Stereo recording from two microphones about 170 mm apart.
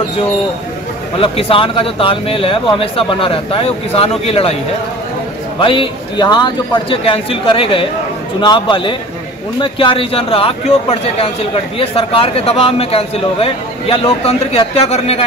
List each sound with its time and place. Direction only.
1.2 s a man's voice: 30° left (ahead or behind)
5.6 s a man's voice: 30° left (ahead or behind)